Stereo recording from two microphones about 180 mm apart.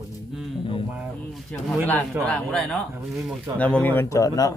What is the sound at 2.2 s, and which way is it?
Speech, 5° left (ahead or behind).